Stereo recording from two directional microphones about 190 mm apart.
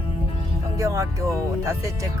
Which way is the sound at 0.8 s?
15° right (ahead or behind).